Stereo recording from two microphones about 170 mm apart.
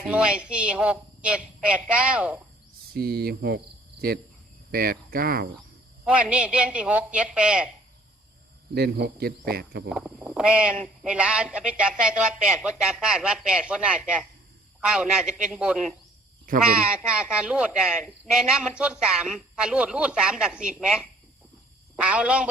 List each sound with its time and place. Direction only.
0.0 s a man's voice: 5° right (ahead or behind)
2.9 s speech: 65° right (ahead or behind)
4.7 s speech: 60° right (ahead or behind)
6.1 s a man's voice: 5° right (ahead or behind)
8.7 s speech: 70° right (ahead or behind)
9.9 s a man's voice: 5° right (ahead or behind)
17.2 s a man's voice: 5° right (ahead or behind)